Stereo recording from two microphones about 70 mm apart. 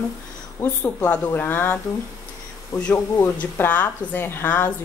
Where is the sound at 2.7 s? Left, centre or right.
Left.